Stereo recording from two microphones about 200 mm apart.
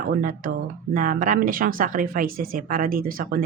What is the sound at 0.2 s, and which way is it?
A woman's voice, 45° right (ahead or behind).